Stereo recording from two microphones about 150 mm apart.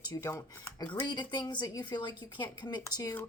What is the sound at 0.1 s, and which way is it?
Speech, 25° left (ahead or behind).